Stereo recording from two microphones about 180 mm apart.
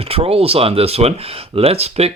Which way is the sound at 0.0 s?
35° right (ahead or behind).